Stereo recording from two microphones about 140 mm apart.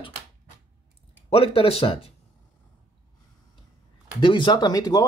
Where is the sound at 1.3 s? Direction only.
40° left (ahead or behind).